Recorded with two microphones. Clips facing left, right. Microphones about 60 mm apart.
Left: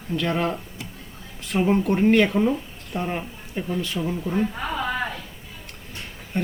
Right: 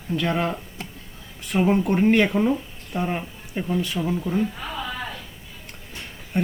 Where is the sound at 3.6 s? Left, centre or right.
Centre.